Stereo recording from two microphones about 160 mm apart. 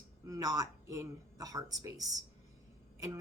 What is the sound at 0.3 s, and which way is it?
A woman's voice, 20° right (ahead or behind).